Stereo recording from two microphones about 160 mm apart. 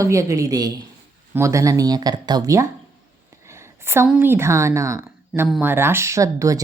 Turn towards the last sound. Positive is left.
turn(degrees=-20)  # may be behind; listen again after turning